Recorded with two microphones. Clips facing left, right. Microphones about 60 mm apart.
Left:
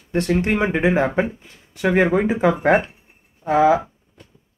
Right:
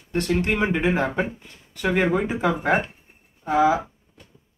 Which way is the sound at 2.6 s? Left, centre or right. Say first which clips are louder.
Left 5 dB; left.